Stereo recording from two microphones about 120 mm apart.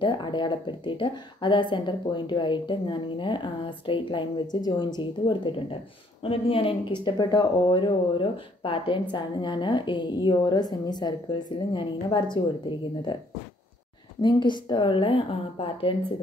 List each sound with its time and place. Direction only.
0.0 s a woman's voice: 40° left (ahead or behind)